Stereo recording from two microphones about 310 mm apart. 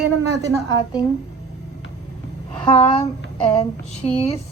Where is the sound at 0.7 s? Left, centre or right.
Centre.